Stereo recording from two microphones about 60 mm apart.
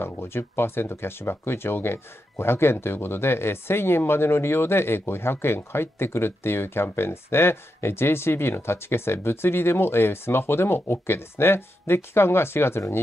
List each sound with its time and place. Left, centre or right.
0.0 s speech: left